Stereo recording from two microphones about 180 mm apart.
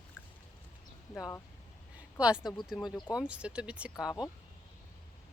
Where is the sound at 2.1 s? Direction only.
5° right (ahead or behind).